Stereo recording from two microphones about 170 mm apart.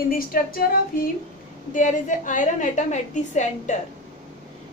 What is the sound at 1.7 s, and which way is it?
A woman's voice, 50° left (ahead or behind).